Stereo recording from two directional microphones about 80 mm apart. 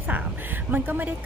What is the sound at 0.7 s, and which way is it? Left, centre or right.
Speech, right.